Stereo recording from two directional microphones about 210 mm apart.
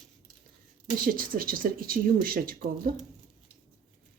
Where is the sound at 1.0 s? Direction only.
40° right (ahead or behind).